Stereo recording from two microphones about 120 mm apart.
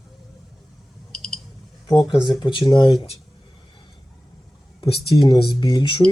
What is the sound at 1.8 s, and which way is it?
Speech, 35° left (ahead or behind).